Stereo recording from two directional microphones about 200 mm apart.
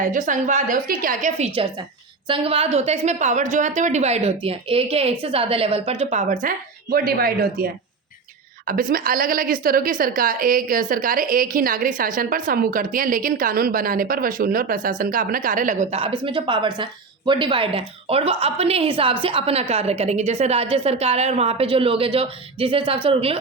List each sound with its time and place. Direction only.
0.0 s a woman's voice: 40° right (ahead or behind)
2.2 s a woman's voice: 25° right (ahead or behind)